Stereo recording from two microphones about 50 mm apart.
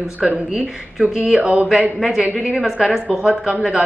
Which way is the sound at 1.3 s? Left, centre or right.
Right.